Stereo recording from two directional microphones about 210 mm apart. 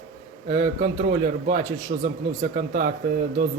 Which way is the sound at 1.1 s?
40° right (ahead or behind).